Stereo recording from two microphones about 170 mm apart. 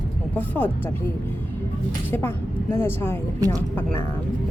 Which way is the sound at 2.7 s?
15° left (ahead or behind).